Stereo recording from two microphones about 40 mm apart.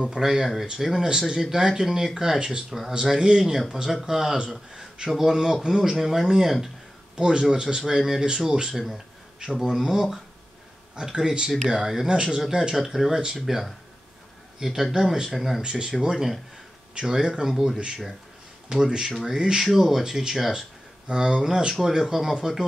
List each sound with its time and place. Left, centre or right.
0.1 s speech: centre
3.3 s speech: centre
4.7 s a sound: centre
5.2 s speech: centre
7.2 s speech: centre
13.2 s speech: right
14.6 s speech: centre
15.6 s speech: right
21.1 s speech: centre